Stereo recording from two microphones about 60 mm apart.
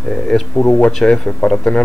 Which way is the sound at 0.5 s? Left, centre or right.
Left.